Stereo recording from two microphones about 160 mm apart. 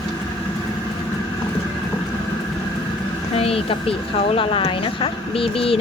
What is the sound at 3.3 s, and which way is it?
Speech, 35° left (ahead or behind).